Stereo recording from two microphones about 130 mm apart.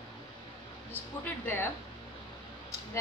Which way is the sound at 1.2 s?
15° left (ahead or behind).